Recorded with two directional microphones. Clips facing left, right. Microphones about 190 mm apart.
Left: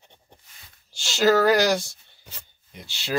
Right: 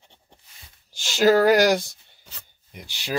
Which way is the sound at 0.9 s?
15° right (ahead or behind).